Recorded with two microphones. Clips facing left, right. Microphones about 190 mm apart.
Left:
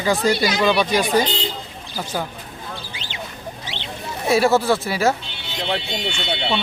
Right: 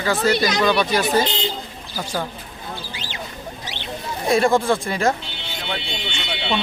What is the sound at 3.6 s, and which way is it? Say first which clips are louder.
Rodents: even; 20° left (ahead or behind).